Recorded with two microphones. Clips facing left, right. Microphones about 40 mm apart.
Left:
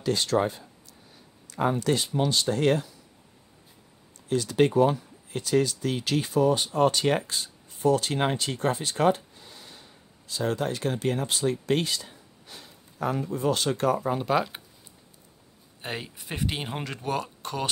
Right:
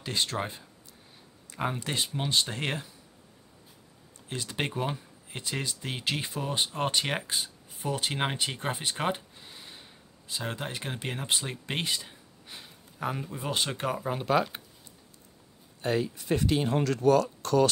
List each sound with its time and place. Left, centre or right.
0.0 s speech: right
1.9 s speech: right
4.3 s speech: right; by 8.4 s centre
8.4 s a sound: right
10.4 s speech: right
13.0 s speech: centre
13.9 s speech: centre
15.8 s speech: left